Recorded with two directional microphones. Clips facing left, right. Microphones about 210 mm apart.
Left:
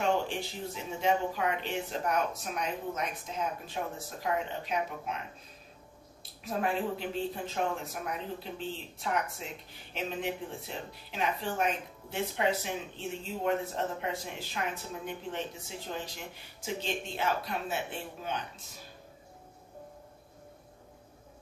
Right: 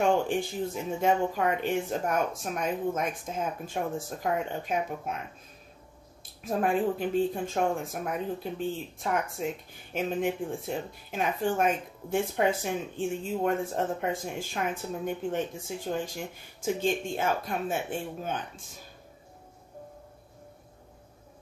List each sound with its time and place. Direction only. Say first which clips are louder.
0.0 s speech: right 5 dB; 50° right (ahead or behind)
6.4 s speech: right 5 dB; 50° right (ahead or behind)